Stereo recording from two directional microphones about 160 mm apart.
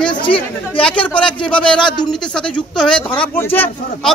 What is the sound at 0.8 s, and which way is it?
Speech, 5° left (ahead or behind).